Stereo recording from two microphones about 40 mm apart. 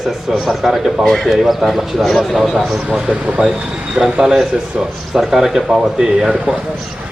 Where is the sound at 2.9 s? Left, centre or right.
Right.